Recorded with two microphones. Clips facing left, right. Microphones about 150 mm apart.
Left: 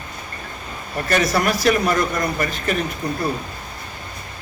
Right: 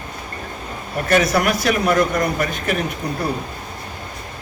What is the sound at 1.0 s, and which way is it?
Speech, 5° right (ahead or behind).